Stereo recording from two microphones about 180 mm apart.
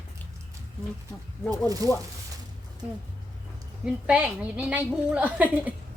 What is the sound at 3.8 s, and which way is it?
A woman's voice, 5° right (ahead or behind).